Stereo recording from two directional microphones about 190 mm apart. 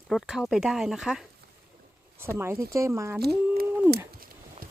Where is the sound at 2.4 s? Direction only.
15° right (ahead or behind).